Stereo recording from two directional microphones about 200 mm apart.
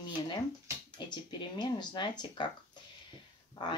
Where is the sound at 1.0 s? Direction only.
20° left (ahead or behind).